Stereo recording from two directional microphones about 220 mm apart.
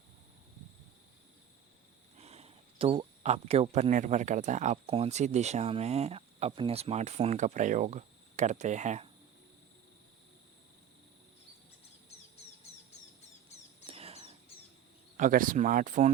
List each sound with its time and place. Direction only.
2.1 s speech: 30° right (ahead or behind)
13.8 s a sound: 25° right (ahead or behind)
15.2 s speech: 40° right (ahead or behind)